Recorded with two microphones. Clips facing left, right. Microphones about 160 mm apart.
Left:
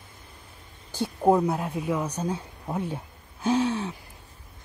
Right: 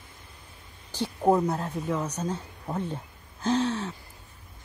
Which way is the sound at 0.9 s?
10° left (ahead or behind).